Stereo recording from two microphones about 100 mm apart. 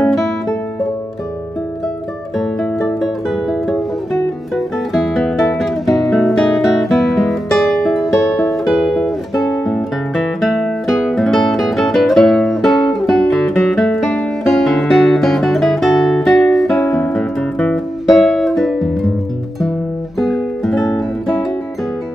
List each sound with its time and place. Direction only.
2.3 s music: centre (ahead or behind)
8.1 s music: 30° left (ahead or behind)
8.5 s music: centre (ahead or behind)
20.2 s music: centre (ahead or behind)